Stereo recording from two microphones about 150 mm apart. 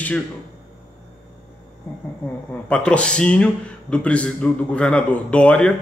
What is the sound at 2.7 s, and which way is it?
Speech, 10° left (ahead or behind).